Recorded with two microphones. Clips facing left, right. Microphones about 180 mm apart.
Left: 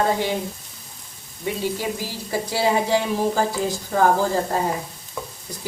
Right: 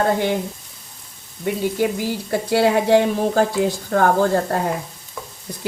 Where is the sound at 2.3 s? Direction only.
60° right (ahead or behind).